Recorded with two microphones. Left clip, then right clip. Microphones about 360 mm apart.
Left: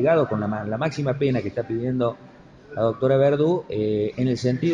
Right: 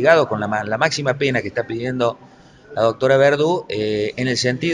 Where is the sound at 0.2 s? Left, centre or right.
Right.